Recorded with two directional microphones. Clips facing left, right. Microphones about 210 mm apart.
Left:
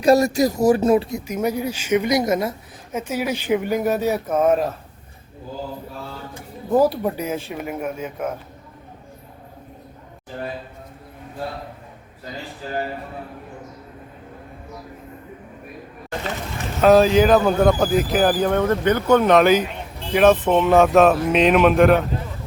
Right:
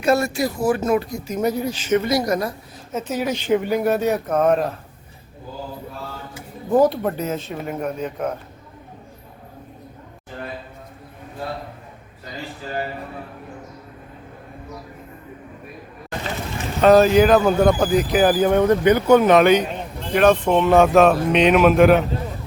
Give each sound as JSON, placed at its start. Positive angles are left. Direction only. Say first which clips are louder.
{"t": 0.0, "sound": "speech", "louder": "left 4 dB", "side_deg": 35}
{"t": 1.3, "sound": "speech", "louder": "right 1 dB", "side_deg": 10}
{"t": 2.9, "sound": "speech", "louder": "even", "side_deg": 10}
{"t": 6.7, "sound": "speech", "louder": "right 1 dB", "side_deg": 5}
{"t": 16.8, "sound": "speech", "louder": "right 1 dB", "side_deg": 0}
{"t": 18.3, "sound": "speech", "louder": "right 3 dB", "side_deg": -10}